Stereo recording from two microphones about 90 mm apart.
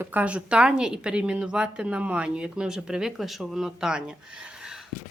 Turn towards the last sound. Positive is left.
turn(degrees=-5)  # may be behind; listen again after turning